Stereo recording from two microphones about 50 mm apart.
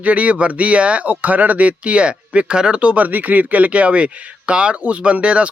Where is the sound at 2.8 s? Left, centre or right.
Right.